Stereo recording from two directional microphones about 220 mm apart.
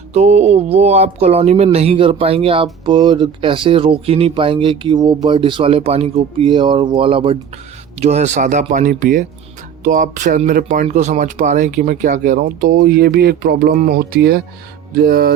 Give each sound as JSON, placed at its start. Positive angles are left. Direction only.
{"t": 0.1, "sound": "speech", "side_deg": -30}
{"t": 12.7, "sound": "speech", "side_deg": -50}